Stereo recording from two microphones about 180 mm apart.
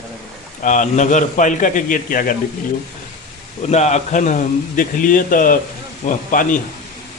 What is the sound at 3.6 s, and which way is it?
A man's voice, 40° left (ahead or behind).